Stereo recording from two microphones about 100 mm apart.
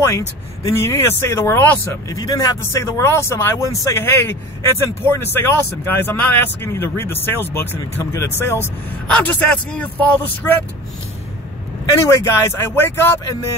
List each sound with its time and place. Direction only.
0.0 s speech: 30° left (ahead or behind)
9.0 s speech: 10° left (ahead or behind)
12.1 s speech: 30° left (ahead or behind)